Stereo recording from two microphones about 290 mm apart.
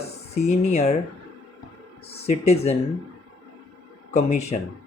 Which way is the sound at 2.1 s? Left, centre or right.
Left.